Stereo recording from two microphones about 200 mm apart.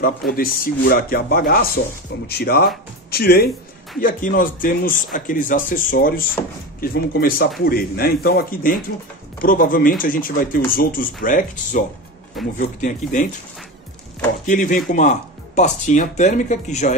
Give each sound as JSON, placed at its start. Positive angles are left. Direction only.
{"t": 0.0, "sound": "speech", "side_deg": 45}
{"t": 14.4, "sound": "speech", "side_deg": 40}